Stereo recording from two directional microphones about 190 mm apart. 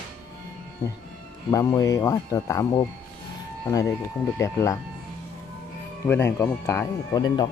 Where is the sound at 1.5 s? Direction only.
15° left (ahead or behind).